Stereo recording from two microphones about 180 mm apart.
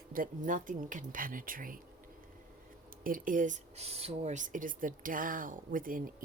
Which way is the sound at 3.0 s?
50° right (ahead or behind).